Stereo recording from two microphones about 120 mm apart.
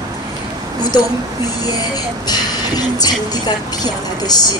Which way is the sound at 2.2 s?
35° left (ahead or behind).